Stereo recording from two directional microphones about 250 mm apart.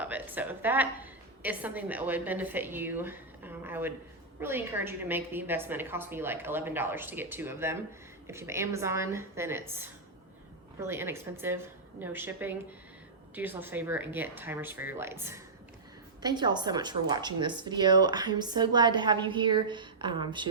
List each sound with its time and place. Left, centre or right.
0.0 s a woman's voice: centre